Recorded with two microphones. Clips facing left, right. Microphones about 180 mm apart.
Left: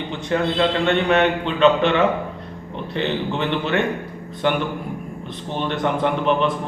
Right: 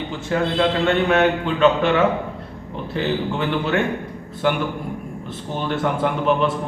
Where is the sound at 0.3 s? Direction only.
5° right (ahead or behind).